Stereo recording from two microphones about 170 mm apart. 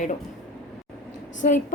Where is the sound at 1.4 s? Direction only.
50° left (ahead or behind).